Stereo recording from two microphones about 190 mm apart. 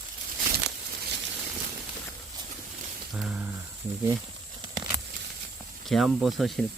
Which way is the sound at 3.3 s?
10° right (ahead or behind).